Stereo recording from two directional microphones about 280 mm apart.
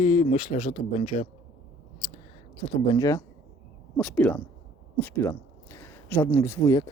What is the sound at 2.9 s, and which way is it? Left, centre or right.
Speech, centre.